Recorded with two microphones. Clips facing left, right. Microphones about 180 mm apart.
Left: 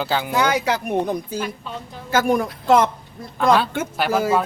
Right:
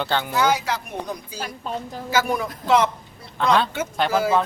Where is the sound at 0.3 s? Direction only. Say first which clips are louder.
Left 2 dB; 65° left (ahead or behind); by 2.9 s 45° left (ahead or behind).